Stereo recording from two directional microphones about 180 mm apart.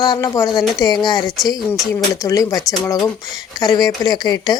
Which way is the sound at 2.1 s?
15° left (ahead or behind).